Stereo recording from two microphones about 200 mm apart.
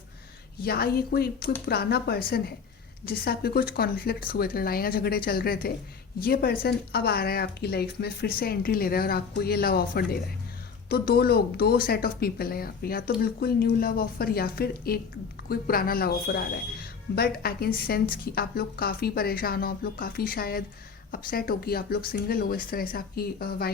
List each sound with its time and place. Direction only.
0.6 s speech: 50° left (ahead or behind)